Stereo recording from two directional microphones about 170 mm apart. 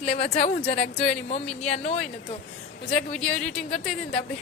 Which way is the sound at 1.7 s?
40° left (ahead or behind).